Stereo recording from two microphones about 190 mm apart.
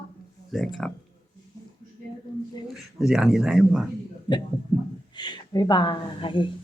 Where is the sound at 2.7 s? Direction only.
Centre (ahead or behind).